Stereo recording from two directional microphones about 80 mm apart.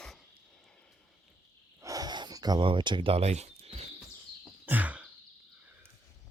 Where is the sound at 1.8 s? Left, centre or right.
Right.